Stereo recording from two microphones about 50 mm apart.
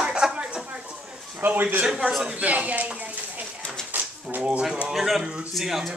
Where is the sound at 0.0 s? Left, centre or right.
Centre.